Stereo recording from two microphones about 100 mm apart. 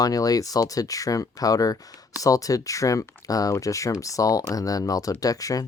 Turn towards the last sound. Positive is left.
turn(degrees=35)  # may be behind; listen again after turning